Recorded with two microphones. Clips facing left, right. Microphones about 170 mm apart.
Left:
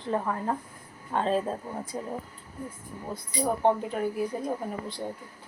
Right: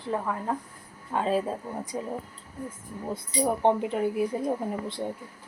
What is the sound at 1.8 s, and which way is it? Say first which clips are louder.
Speech: right 2 dB; 15° right (ahead or behind).